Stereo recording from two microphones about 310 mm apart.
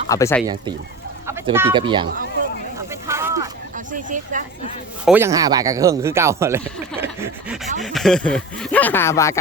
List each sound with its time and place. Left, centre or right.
0.1 s speech: centre
1.3 s speech: centre
3.1 s a sound: centre
3.9 s speech: right
5.0 s speech: centre
7.0 s snicker: centre
7.8 s speech: centre